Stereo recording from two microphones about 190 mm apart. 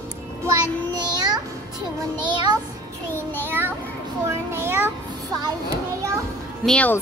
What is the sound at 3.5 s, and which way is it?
Child singing, 10° right (ahead or behind).